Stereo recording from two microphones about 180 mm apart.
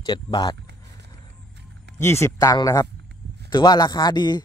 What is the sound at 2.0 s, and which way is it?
Speech, 15° left (ahead or behind).